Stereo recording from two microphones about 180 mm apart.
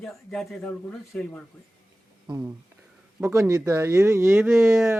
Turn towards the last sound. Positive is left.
turn(degrees=0)  # may be behind; listen again after turning